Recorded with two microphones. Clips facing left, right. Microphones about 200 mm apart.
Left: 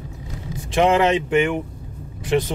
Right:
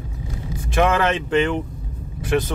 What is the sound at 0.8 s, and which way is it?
Speech, 20° left (ahead or behind).